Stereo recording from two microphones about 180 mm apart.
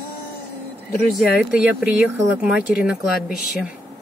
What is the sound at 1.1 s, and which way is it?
Speech, 5° right (ahead or behind).